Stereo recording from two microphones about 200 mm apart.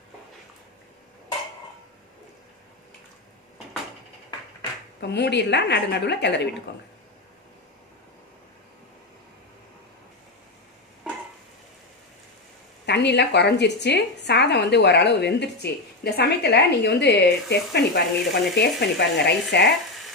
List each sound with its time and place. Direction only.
4.9 s a woman's voice: 55° left (ahead or behind)
12.8 s a woman's voice: 60° left (ahead or behind)